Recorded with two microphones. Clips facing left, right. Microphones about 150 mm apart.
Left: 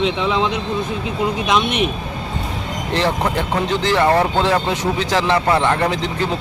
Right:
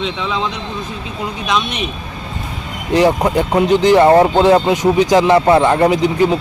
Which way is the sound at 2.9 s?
15° right (ahead or behind).